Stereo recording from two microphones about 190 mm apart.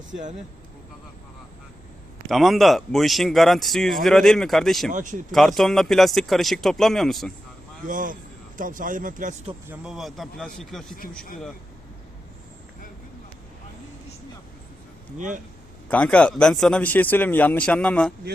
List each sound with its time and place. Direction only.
2.2 s speech: centre (ahead or behind)
4.9 s speech: 40° right (ahead or behind)
5.3 s speech: centre (ahead or behind)
7.9 s a man's voice: 45° right (ahead or behind)
9.6 s speech: 5° right (ahead or behind)
15.9 s speech: 5° left (ahead or behind)